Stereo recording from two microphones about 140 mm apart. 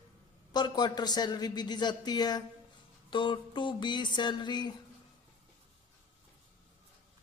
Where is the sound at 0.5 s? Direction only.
30° left (ahead or behind).